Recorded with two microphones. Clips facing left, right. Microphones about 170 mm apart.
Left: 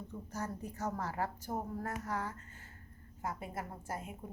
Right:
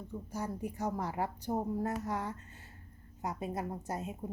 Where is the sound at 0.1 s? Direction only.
10° right (ahead or behind).